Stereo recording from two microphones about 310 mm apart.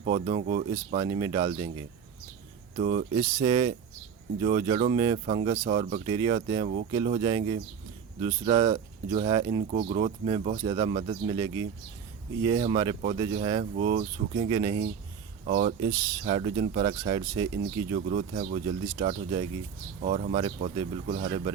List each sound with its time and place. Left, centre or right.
0.0 s speech: centre